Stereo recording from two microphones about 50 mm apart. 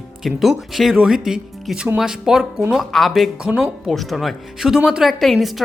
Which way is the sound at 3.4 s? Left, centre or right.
Right.